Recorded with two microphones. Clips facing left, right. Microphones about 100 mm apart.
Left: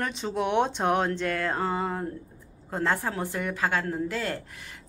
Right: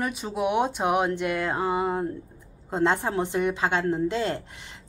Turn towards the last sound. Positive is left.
turn(degrees=-25)  # may be behind; listen again after turning